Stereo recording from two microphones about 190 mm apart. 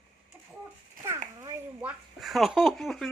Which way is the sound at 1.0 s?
45° right (ahead or behind).